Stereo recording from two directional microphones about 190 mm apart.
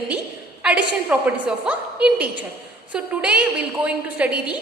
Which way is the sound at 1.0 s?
10° right (ahead or behind).